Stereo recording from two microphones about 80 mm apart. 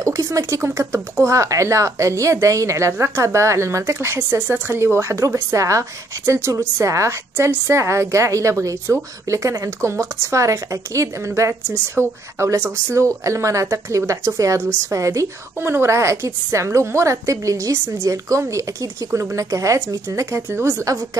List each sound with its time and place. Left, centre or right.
0.0 s a woman's voice: right
20.8 s a woman's voice: right